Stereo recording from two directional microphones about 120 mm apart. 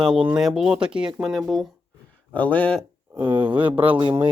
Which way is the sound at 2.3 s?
10° left (ahead or behind).